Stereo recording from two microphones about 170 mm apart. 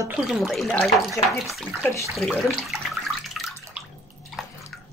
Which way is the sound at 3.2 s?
Centre (ahead or behind).